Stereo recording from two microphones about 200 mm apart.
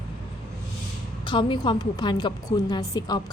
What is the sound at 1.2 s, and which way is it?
A woman's voice, 25° left (ahead or behind).